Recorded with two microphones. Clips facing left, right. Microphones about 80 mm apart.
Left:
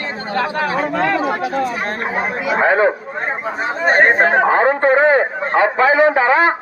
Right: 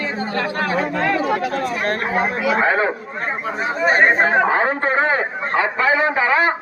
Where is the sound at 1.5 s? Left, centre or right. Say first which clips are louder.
Left 1 dB; centre.